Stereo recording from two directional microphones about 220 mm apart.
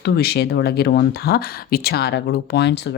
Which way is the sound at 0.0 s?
45° left (ahead or behind).